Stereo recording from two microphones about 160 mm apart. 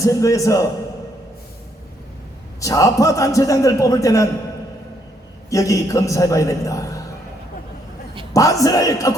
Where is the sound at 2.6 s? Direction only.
20° left (ahead or behind).